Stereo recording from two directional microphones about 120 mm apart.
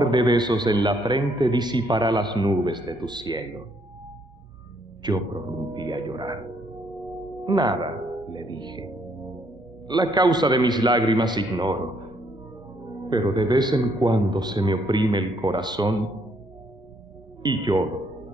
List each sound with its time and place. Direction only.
0.0 s a man's voice: 35° right (ahead or behind)
5.0 s a man's voice: 40° right (ahead or behind)
7.4 s a man's voice: 40° right (ahead or behind)
13.0 s a man's voice: 40° right (ahead or behind)
17.4 s a man's voice: 35° right (ahead or behind)